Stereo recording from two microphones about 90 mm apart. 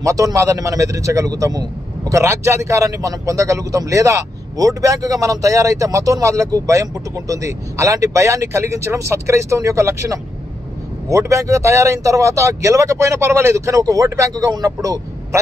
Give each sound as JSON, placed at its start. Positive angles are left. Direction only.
{"t": 0.0, "sound": "a man's voice", "side_deg": -40}